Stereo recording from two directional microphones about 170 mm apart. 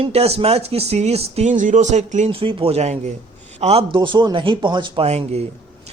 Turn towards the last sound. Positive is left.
turn(degrees=-40)  # may be behind; listen again after turning